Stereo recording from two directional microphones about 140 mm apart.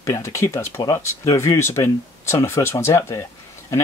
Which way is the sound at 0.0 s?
20° left (ahead or behind).